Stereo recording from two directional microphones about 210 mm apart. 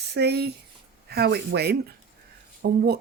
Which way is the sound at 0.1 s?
50° right (ahead or behind).